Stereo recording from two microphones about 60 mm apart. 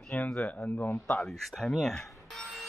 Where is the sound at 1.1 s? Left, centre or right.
Centre.